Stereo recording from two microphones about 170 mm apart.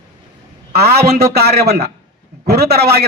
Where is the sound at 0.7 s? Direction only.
70° right (ahead or behind).